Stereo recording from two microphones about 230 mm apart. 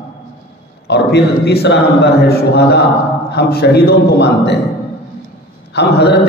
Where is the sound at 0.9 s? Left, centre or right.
Left.